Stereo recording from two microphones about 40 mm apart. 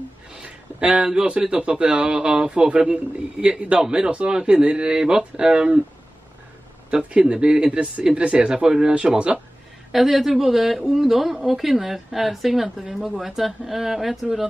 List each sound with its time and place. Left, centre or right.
0.4 s a man's voice: right
2.0 s a man's voice: centre
6.9 s speech: right
9.9 s a woman's voice: centre